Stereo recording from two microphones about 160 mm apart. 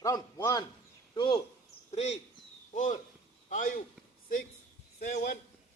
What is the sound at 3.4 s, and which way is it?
Speech, 50° left (ahead or behind).